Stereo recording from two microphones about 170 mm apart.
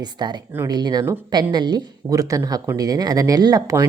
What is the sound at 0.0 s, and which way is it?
Speech, 25° right (ahead or behind).